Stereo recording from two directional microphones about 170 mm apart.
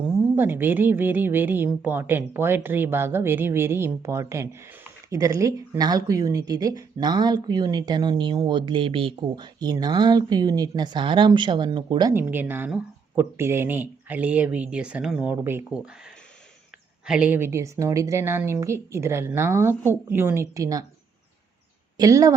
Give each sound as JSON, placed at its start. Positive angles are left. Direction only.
{"t": 0.3, "sound": "speech", "side_deg": -10}
{"t": 12.2, "sound": "speech", "side_deg": -10}
{"t": 17.1, "sound": "speech", "side_deg": -10}
{"t": 21.9, "sound": "speech", "side_deg": -20}